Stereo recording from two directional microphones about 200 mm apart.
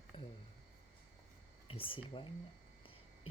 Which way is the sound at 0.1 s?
25° left (ahead or behind).